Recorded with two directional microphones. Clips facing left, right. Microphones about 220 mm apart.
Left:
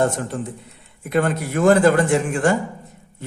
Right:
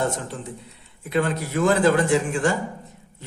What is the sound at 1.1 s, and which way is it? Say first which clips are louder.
A man's voice: left 3 dB; 50° left (ahead or behind).